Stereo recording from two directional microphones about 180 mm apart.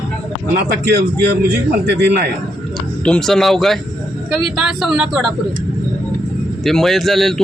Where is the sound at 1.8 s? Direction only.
70° right (ahead or behind).